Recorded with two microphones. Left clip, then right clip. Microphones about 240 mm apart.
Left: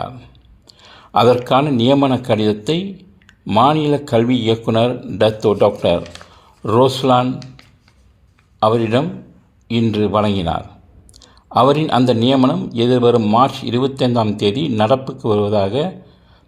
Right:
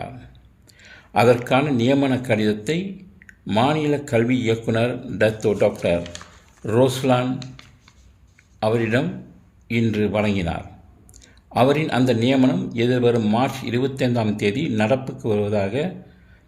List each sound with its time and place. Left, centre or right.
0.7 s a man's voice: left
8.5 s speech: left